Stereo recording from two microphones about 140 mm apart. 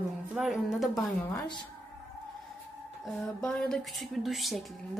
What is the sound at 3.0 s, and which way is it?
A woman's voice, 5° left (ahead or behind).